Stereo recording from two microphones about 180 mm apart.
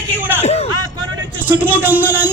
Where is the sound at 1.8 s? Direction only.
10° right (ahead or behind).